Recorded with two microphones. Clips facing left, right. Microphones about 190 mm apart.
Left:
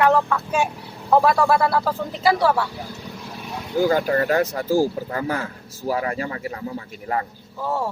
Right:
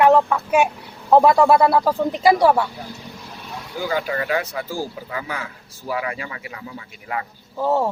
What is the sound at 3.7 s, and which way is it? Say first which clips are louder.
Speech: left 5 dB; 45° left (ahead or behind).